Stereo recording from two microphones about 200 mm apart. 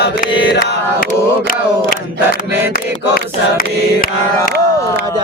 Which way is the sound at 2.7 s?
45° left (ahead or behind).